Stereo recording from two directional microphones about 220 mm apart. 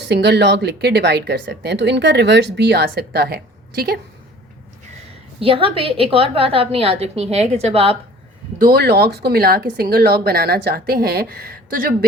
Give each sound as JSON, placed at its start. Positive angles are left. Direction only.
{"t": 0.0, "sound": "speech", "side_deg": -50}
{"t": 5.4, "sound": "a woman's voice", "side_deg": -25}
{"t": 8.5, "sound": "speech", "side_deg": -45}